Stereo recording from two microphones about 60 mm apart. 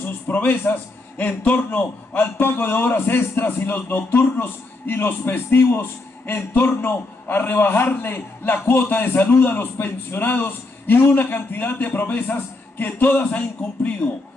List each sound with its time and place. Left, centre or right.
0.0 s a man's voice: left